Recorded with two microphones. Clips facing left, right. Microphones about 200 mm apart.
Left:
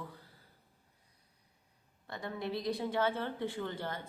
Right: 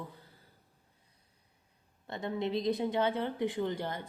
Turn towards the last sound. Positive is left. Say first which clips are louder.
# right 5 dB
turn(degrees=-20)  # may be behind; listen again after turning